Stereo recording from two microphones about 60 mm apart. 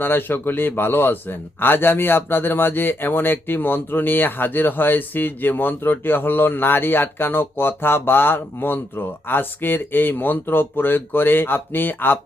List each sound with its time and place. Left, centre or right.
0.0 s a man's voice: left